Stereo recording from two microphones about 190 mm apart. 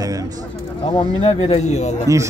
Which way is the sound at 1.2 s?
30° left (ahead or behind).